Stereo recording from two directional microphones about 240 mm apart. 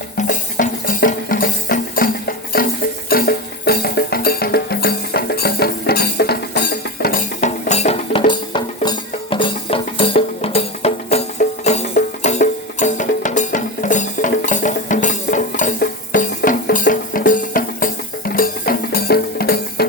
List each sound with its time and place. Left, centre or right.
0.2 s music: left